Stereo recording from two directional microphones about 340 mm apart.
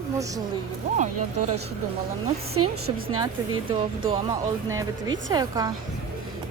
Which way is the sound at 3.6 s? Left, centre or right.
Centre.